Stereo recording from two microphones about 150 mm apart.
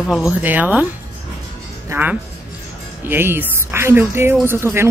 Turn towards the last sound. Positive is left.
turn(degrees=-15)  # may be behind; listen again after turning